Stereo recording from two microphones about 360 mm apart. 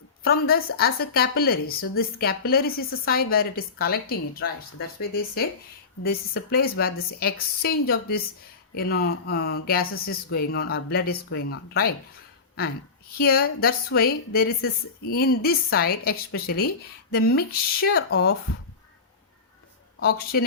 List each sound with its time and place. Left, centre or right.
0.3 s a woman's voice: left
13.1 s a woman's voice: left
20.0 s a woman's voice: left